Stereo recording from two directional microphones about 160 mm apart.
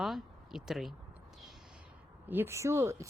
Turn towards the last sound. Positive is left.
turn(degrees=-15)  # may be behind; listen again after turning